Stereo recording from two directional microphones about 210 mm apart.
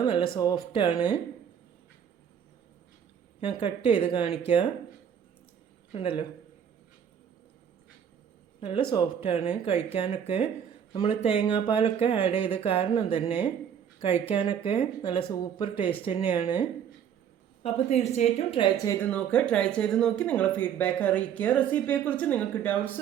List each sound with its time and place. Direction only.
0.0 s a sound: 20° left (ahead or behind)
0.3 s speech: 20° left (ahead or behind)
3.8 s speech: 25° left (ahead or behind)
5.9 s speech: 25° left (ahead or behind)
8.6 s speech: 25° left (ahead or behind)
17.6 s speech: 30° left (ahead or behind)
18.9 s speech: 5° left (ahead or behind)